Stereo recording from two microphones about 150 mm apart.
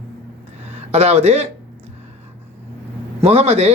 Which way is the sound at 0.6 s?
45° right (ahead or behind).